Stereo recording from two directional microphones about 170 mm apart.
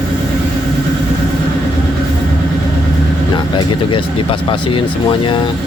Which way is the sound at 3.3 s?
30° left (ahead or behind).